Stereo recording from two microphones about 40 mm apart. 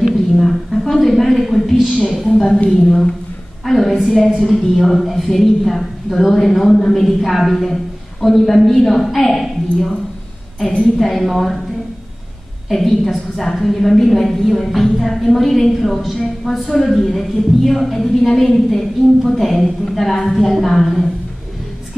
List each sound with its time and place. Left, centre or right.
0.4 s a sound: centre
2.2 s a woman's voice: centre
11.0 s speech: centre
12.6 s a woman's voice: centre